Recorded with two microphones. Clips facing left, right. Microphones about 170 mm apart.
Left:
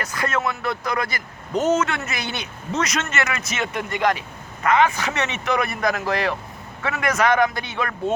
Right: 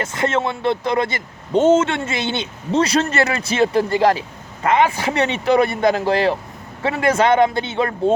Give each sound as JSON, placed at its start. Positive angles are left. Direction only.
{"t": 0.0, "sound": "speech", "side_deg": -25}